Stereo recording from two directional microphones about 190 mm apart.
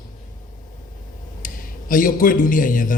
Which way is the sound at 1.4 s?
45° left (ahead or behind).